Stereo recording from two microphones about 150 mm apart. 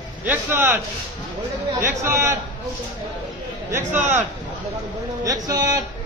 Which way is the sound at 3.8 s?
55° right (ahead or behind).